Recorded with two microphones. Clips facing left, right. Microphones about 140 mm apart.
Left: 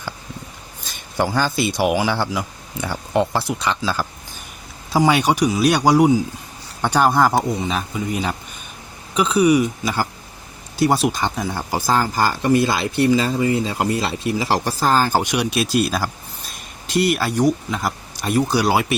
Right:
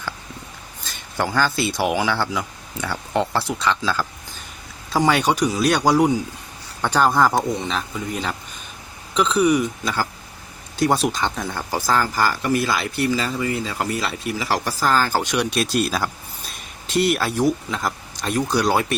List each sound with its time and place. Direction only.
1.1 s speech: 15° left (ahead or behind)
11.5 s speech: 15° left (ahead or behind)